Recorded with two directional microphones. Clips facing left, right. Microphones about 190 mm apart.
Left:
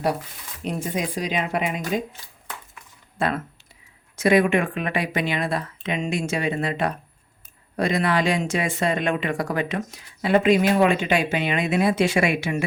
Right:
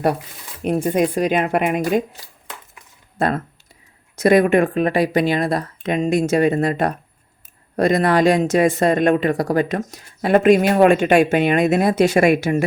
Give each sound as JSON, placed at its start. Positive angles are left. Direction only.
{"t": 0.6, "sound": "speech", "side_deg": -55}
{"t": 3.2, "sound": "speech", "side_deg": -40}